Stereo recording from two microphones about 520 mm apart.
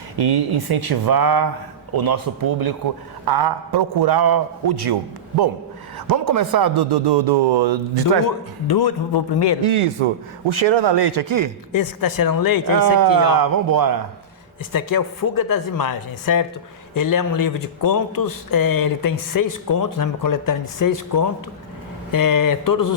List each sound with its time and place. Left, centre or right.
0.2 s a man's voice: right
6.1 s speech: right
8.6 s a man's voice: left
9.6 s a man's voice: right
11.7 s speech: left
12.7 s a man's voice: right
14.7 s speech: left